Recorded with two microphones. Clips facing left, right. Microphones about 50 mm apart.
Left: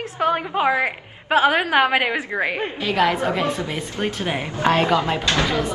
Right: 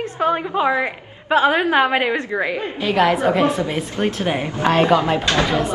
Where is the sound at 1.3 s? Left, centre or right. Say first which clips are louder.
Right 1 dB; centre.